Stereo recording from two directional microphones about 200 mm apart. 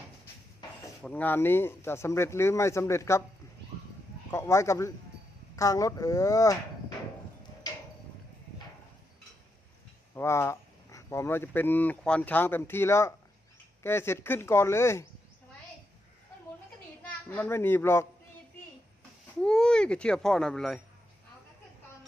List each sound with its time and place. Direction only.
1.0 s speech: 10° left (ahead or behind)
4.3 s speech: 15° left (ahead or behind)
10.2 s speech: 15° left (ahead or behind)
17.2 s speech: 10° left (ahead or behind)
19.4 s speech: 5° left (ahead or behind)